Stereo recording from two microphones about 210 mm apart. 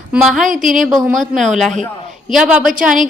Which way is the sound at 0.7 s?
Centre (ahead or behind).